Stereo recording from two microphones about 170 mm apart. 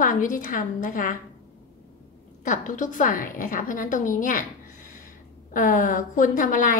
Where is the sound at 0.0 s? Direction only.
50° left (ahead or behind).